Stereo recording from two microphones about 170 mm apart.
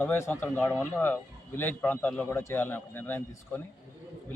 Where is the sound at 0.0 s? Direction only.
10° left (ahead or behind).